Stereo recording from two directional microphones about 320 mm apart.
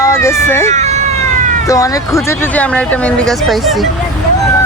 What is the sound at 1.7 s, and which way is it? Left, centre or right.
Speech, centre.